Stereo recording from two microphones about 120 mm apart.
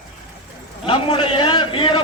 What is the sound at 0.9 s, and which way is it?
A man's voice, 50° left (ahead or behind).